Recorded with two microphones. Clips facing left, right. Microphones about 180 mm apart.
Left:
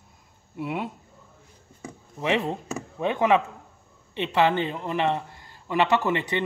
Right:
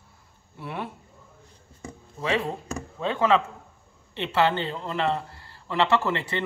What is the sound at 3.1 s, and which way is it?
Speech, 15° left (ahead or behind).